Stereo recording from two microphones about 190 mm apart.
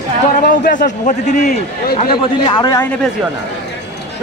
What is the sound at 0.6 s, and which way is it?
A man's voice, 45° left (ahead or behind).